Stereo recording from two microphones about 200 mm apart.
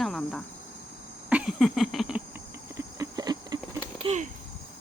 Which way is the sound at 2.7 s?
20° right (ahead or behind).